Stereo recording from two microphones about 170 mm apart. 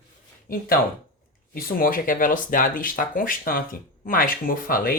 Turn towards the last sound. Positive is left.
turn(degrees=55)  # may be behind; listen again after turning